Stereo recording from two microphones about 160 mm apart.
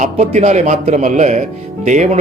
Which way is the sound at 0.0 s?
45° right (ahead or behind).